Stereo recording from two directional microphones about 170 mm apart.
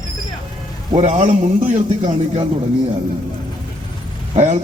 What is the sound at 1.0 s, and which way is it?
A man's voice, 40° right (ahead or behind).